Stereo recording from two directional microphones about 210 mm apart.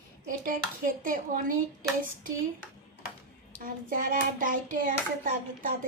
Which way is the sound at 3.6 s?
40° right (ahead or behind).